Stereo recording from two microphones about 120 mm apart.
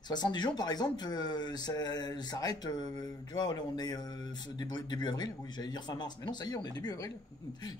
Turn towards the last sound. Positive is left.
turn(degrees=35)  # may be behind; listen again after turning